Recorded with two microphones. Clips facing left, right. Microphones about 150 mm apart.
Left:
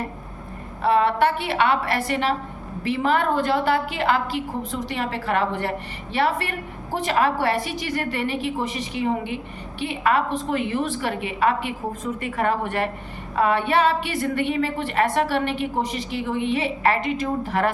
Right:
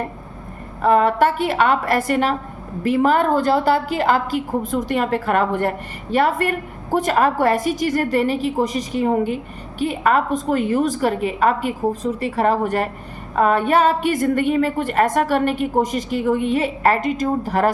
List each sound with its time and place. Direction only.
0.8 s a woman's voice: 45° right (ahead or behind)